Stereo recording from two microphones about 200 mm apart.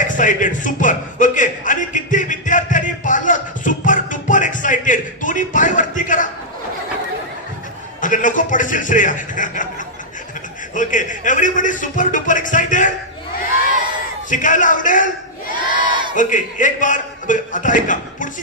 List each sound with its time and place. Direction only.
0.0 s a sound: 40° left (ahead or behind)
8.0 s a man's voice: 40° left (ahead or behind)
10.7 s a man's voice: 40° left (ahead or behind)
14.3 s a man's voice: 40° left (ahead or behind)
15.8 s crowd: 25° right (ahead or behind)
16.2 s a man's voice: 40° left (ahead or behind)